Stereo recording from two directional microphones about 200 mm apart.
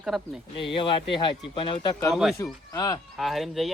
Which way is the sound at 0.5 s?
25° left (ahead or behind).